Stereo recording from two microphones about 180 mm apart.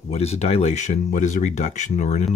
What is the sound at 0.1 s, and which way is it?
Speech, 35° left (ahead or behind).